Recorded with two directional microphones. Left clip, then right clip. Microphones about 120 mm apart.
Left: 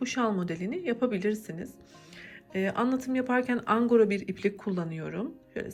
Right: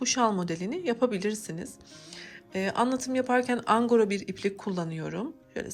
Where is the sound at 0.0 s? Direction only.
20° right (ahead or behind).